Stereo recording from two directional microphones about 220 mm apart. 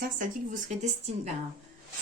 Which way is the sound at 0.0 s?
35° right (ahead or behind).